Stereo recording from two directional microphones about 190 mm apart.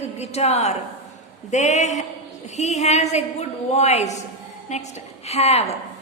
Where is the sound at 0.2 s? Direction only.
35° left (ahead or behind).